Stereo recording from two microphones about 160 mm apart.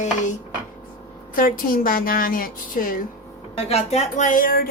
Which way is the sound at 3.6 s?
40° left (ahead or behind).